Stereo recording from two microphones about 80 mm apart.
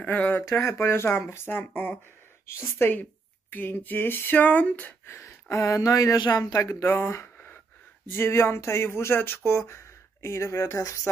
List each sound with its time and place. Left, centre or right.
0.0 s a woman's voice: centre
0.6 s a woman's voice: left
5.0 s speech: left
6.5 s speech: left
6.8 s speech: left